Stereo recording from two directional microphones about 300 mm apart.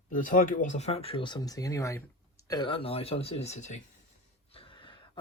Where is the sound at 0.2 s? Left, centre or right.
Left.